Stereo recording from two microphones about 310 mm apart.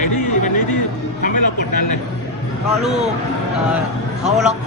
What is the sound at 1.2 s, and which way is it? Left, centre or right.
Speech, left.